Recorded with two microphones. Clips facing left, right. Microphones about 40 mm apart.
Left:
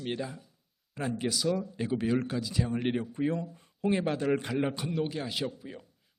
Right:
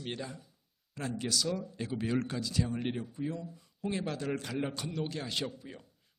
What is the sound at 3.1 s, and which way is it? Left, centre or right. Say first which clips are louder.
Speech: left 7 dB; left.